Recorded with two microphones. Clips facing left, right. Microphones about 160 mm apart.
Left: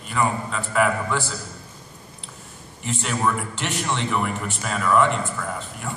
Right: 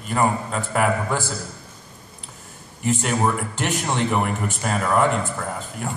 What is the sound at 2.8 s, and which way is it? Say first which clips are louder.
A man's voice: right 3 dB; 50° right (ahead or behind).